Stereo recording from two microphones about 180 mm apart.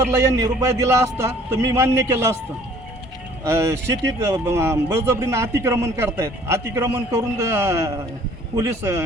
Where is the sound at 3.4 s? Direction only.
15° right (ahead or behind).